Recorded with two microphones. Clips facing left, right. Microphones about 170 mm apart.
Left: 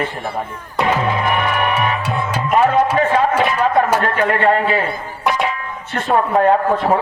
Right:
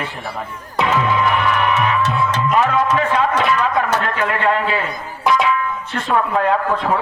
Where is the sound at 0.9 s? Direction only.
50° left (ahead or behind).